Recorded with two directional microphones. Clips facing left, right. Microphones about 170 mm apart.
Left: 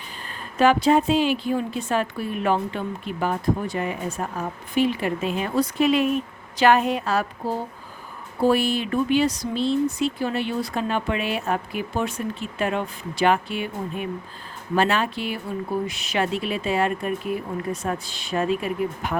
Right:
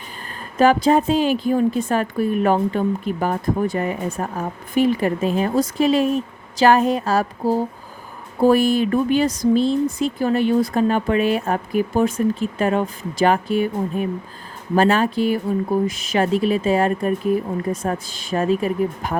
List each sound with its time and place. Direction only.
0.6 s a woman's voice: 40° right (ahead or behind)